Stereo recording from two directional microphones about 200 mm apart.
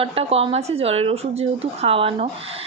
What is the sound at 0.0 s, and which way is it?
A woman's voice, 30° right (ahead or behind).